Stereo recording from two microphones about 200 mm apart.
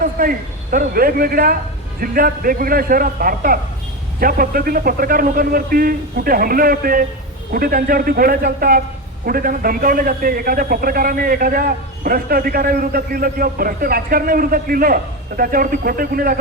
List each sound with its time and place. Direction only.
0.0 s a man's voice: 45° right (ahead or behind)